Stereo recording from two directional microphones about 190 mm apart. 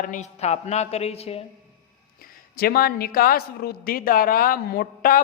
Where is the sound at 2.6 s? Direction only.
50° left (ahead or behind).